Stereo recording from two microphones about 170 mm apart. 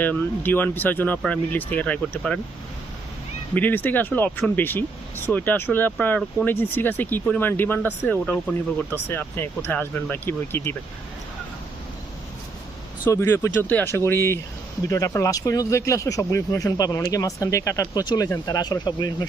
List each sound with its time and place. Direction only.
0.0 s speech: 10° left (ahead or behind)
3.5 s speech: 10° left (ahead or behind)
13.1 s speech: 15° left (ahead or behind)